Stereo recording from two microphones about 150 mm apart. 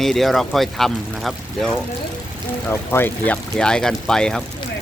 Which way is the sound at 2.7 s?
15° left (ahead or behind).